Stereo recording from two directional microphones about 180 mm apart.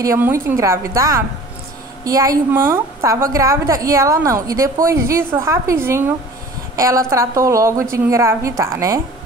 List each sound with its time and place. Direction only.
0.0 s a woman's voice: 15° right (ahead or behind)